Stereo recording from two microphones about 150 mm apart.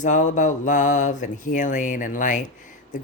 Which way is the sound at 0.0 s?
55° left (ahead or behind).